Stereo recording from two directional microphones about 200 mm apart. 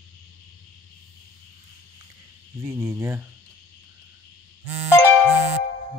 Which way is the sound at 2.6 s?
10° right (ahead or behind).